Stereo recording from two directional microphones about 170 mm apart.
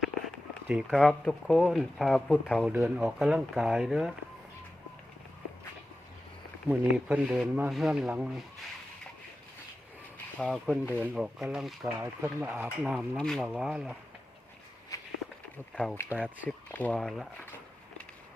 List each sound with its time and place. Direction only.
0.7 s speech: centre (ahead or behind)
2.6 s speech: 5° right (ahead or behind)
6.7 s speech: 5° right (ahead or behind)
10.3 s speech: centre (ahead or behind)
14.9 s walk: 20° left (ahead or behind)
15.5 s speech: 5° left (ahead or behind)